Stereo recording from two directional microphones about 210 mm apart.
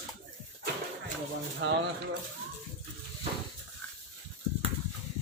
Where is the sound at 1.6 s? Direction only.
60° right (ahead or behind).